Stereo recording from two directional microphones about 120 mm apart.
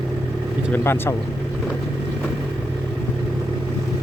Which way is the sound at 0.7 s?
20° left (ahead or behind).